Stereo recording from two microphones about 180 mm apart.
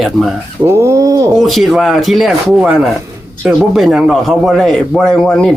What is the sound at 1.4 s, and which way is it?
Speech, centre (ahead or behind).